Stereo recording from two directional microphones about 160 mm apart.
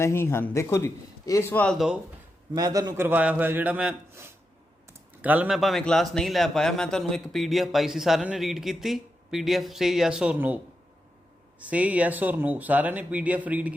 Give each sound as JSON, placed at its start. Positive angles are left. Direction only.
{"t": 0.0, "sound": "a man's voice", "side_deg": 15}
{"t": 2.5, "sound": "a man's voice", "side_deg": -25}
{"t": 3.1, "sound": "a man's voice", "side_deg": -10}
{"t": 11.6, "sound": "speech", "side_deg": -10}